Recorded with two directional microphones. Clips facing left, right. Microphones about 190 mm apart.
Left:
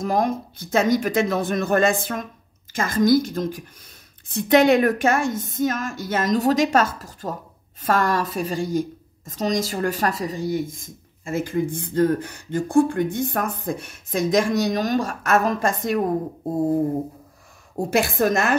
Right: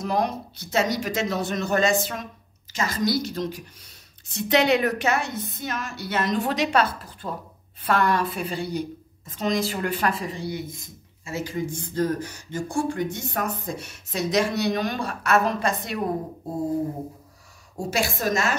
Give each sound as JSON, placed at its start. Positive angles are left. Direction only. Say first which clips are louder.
{"t": 0.0, "sound": "a woman's voice", "louder": "left 3 dB", "side_deg": 45}
{"t": 17.7, "sound": "a woman's voice", "louder": "left 6 dB", "side_deg": 55}